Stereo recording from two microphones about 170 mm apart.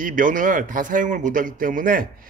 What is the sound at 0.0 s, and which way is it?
A man's voice, 50° right (ahead or behind).